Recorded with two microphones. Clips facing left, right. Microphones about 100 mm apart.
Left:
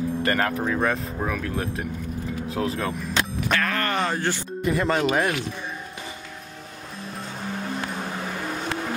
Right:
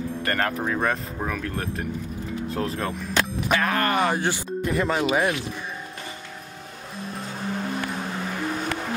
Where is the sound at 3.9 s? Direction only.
15° right (ahead or behind).